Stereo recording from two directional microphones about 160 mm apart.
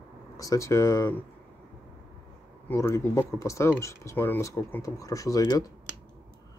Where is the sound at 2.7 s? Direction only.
15° left (ahead or behind).